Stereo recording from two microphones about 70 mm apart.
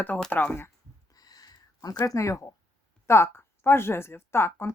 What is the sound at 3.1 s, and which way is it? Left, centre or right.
Speech, left.